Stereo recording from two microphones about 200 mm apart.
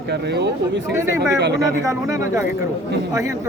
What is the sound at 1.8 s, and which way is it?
Speech, 15° right (ahead or behind).